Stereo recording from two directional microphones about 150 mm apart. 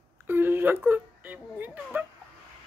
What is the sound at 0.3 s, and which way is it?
Speech, 15° right (ahead or behind).